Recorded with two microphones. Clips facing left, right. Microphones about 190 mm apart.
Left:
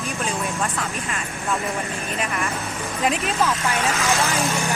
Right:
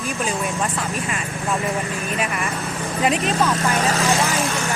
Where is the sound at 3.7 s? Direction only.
35° right (ahead or behind).